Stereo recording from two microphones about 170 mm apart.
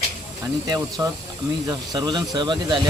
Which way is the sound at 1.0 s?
20° right (ahead or behind).